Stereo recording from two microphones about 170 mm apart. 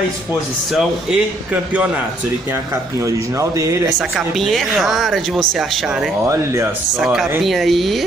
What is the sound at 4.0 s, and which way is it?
Speech, centre (ahead or behind).